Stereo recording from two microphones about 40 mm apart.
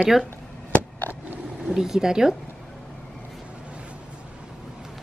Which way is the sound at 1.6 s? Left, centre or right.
Centre.